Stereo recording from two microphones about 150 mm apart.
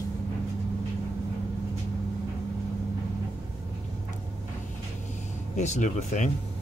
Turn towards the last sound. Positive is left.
turn(degrees=55)  # may be behind; listen again after turning